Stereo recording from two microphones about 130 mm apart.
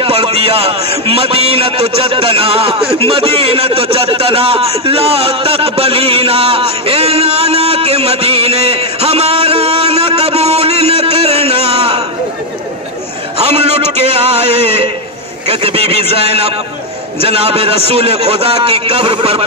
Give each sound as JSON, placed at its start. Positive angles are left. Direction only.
{"t": 0.0, "sound": "a man's voice", "side_deg": -45}
{"t": 13.4, "sound": "a man's voice", "side_deg": -50}